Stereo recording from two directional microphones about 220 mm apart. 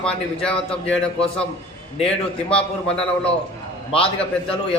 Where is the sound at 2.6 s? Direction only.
25° left (ahead or behind).